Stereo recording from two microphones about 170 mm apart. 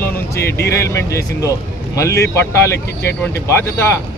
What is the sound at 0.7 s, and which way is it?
Speech, 15° left (ahead or behind).